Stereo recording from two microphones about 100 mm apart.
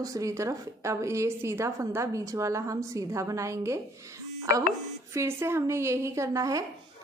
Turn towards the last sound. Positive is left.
turn(degrees=-35)  # may be behind; listen again after turning